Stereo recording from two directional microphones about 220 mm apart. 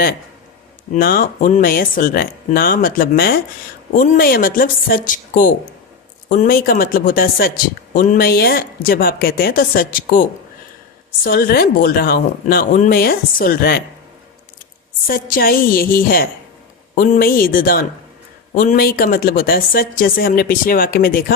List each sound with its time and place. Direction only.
0.9 s a woman's voice: 40° left (ahead or behind)
15.0 s a woman's voice: 40° left (ahead or behind)